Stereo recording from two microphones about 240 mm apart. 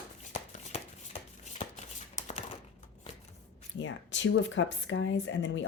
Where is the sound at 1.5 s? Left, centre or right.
Left.